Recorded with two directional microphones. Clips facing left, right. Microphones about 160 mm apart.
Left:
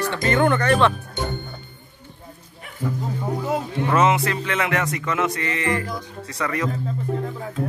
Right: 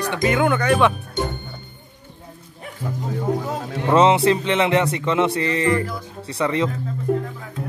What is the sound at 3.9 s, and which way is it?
Speech, 30° right (ahead or behind).